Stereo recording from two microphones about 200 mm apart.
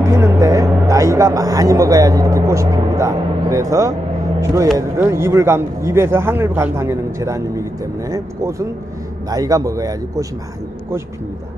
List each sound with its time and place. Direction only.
0.0 s music: 15° right (ahead or behind)
4.7 s speech: 15° right (ahead or behind)